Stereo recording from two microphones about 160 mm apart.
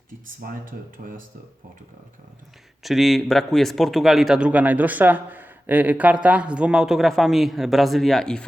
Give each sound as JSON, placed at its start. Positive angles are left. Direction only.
{"t": 0.4, "sound": "speech", "side_deg": -60}
{"t": 2.8, "sound": "a man's voice", "side_deg": 0}